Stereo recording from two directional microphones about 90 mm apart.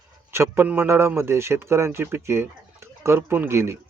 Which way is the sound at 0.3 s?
25° right (ahead or behind).